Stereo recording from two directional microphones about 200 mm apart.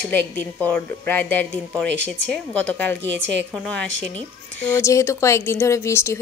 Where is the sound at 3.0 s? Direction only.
60° right (ahead or behind).